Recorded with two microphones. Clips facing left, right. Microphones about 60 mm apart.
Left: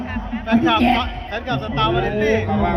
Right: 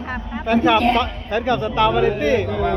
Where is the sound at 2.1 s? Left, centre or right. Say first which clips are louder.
Even; centre.